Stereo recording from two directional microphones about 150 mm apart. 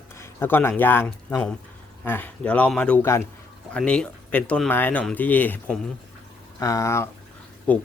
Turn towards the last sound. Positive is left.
turn(degrees=10)  # may be behind; listen again after turning